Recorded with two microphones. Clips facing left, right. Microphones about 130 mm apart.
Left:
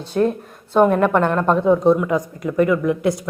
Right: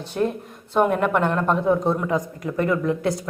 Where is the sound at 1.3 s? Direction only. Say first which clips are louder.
Left 4 dB; 50° left (ahead or behind).